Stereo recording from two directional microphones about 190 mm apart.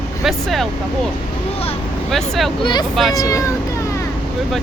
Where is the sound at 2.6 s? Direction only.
25° left (ahead or behind).